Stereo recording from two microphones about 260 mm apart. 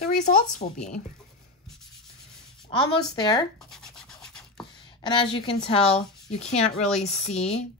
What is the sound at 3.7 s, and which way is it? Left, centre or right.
Rub, centre.